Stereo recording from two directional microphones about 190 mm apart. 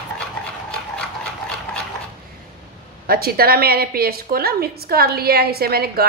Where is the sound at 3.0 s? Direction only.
50° right (ahead or behind).